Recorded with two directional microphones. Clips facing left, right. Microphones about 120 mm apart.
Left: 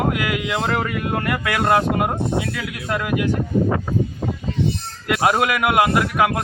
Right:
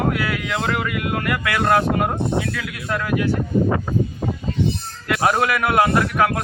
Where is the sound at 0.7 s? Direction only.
35° left (ahead or behind).